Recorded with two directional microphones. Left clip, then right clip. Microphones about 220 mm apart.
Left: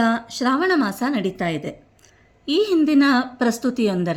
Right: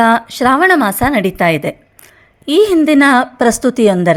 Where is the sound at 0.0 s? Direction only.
40° right (ahead or behind).